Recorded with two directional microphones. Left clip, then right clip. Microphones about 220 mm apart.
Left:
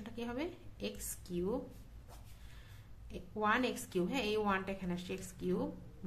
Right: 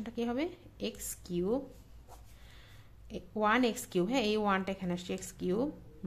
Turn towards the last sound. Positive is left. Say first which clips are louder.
# right 5 dB
turn(degrees=-30)  # may be behind; listen again after turning